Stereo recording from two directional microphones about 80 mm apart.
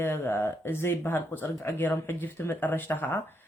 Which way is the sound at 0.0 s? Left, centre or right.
Left.